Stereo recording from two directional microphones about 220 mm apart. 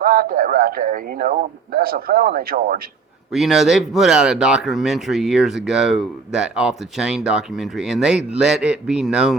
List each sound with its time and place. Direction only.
0.0 s speech: 45° right (ahead or behind)
3.3 s speech: centre (ahead or behind)